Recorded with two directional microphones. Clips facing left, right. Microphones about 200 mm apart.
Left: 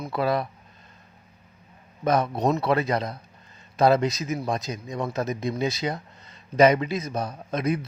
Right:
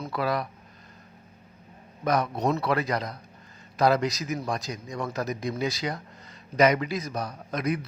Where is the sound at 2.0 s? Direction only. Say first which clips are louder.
Left 3 dB; 25° left (ahead or behind).